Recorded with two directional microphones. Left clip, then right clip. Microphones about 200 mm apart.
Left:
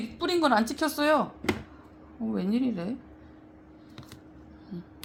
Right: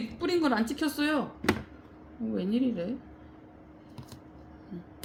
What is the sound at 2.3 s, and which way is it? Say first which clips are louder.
Speech: even; 30° left (ahead or behind).